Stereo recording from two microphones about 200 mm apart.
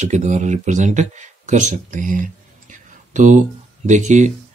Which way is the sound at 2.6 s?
40° right (ahead or behind).